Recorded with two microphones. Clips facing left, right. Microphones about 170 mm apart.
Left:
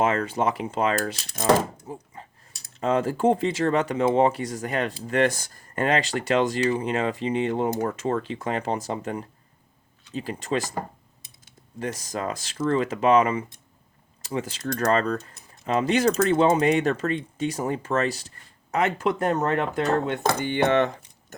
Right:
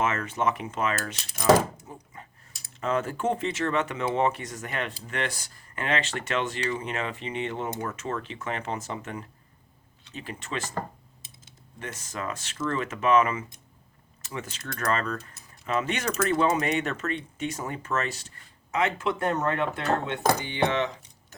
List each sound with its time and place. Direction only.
0.0 s speech: 35° left (ahead or behind)
11.8 s speech: 35° left (ahead or behind)
20.4 s speech: 50° left (ahead or behind)